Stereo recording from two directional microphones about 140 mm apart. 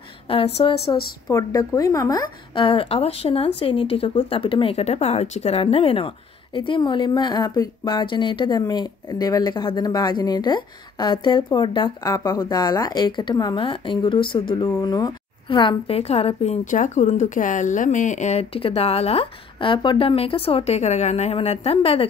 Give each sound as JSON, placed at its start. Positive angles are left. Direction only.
{"t": 0.3, "sound": "speech", "side_deg": 40}
{"t": 1.3, "sound": "a woman's voice", "side_deg": 25}
{"t": 16.7, "sound": "speech", "side_deg": 60}